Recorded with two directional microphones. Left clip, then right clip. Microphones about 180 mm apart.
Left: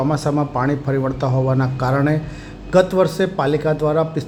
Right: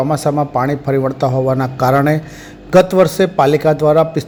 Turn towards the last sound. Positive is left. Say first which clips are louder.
# right 7 dB
turn(degrees=-25)  # may be behind; listen again after turning